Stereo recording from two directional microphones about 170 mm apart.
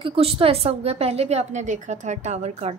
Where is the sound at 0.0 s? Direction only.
35° right (ahead or behind).